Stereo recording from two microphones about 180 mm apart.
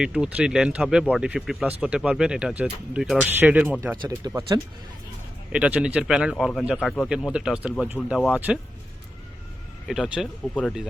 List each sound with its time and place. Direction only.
0.0 s speech: 5° right (ahead or behind)
7.1 s speech: 5° right (ahead or behind)
9.8 s speech: centre (ahead or behind)